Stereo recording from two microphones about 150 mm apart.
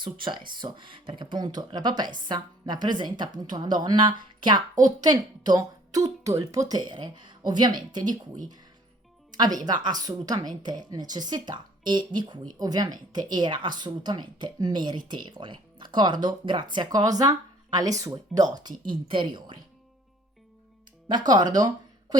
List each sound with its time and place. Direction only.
0.0 s speech: 30° right (ahead or behind)
9.3 s speech: 25° right (ahead or behind)
21.2 s speech: 25° right (ahead or behind)